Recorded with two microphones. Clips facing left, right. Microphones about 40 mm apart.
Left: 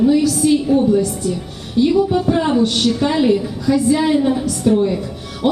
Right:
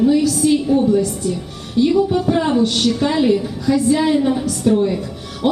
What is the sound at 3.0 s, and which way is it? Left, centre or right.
A woman's voice, centre.